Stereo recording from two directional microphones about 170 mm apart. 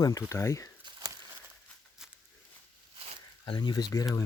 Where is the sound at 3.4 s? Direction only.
30° left (ahead or behind).